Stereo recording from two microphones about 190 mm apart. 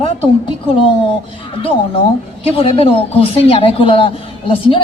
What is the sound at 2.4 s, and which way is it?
Speech, 30° left (ahead or behind).